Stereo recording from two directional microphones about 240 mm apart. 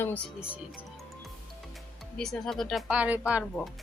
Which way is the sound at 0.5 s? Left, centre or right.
Centre.